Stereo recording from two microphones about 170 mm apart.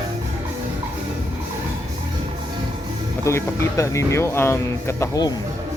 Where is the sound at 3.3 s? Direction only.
15° left (ahead or behind).